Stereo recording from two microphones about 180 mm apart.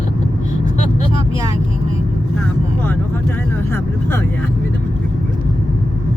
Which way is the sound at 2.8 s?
10° left (ahead or behind).